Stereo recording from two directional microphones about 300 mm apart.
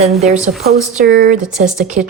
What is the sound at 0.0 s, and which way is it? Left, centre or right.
Speech, right.